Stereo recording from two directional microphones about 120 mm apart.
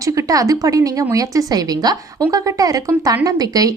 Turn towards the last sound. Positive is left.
turn(degrees=-30)  # may be behind; listen again after turning